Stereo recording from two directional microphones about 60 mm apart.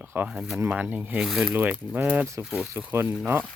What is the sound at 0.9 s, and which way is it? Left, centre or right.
Speech, right.